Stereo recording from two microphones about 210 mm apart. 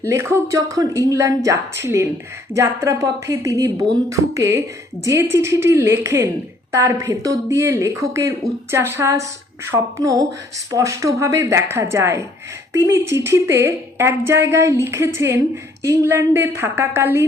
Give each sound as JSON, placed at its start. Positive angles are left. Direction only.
{"t": 0.0, "sound": "a woman's voice", "side_deg": -15}